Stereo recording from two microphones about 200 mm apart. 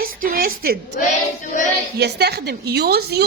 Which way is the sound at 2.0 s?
55° right (ahead or behind).